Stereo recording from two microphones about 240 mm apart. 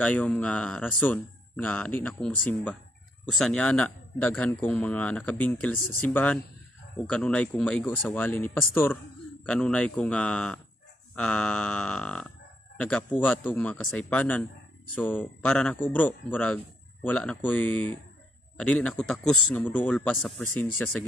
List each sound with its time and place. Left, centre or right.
0.0 s a man's voice: centre